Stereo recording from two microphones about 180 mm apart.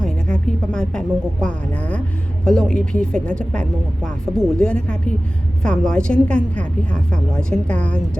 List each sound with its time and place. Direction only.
0.0 s speech: 5° left (ahead or behind)